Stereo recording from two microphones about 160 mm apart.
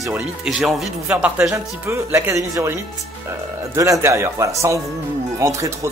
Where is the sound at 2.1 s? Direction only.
20° right (ahead or behind).